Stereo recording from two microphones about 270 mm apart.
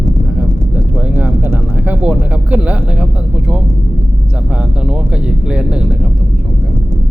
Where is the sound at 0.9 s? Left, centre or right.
Centre.